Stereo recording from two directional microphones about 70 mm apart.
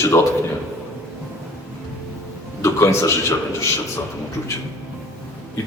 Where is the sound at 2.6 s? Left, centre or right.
Left.